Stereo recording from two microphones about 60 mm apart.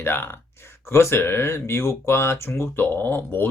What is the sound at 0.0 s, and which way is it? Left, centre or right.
Speech, left.